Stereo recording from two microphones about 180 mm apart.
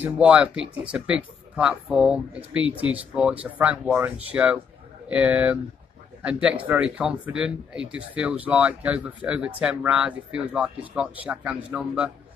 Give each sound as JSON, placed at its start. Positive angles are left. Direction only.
{"t": 0.0, "sound": "speech", "side_deg": -5}